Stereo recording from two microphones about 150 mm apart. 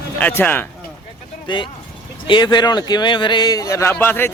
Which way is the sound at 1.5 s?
30° left (ahead or behind).